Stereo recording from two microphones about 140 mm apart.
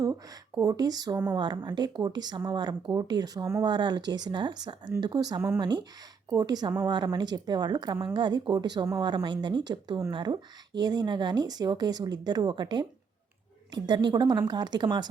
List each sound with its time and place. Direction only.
0.0 s speech: 25° right (ahead or behind)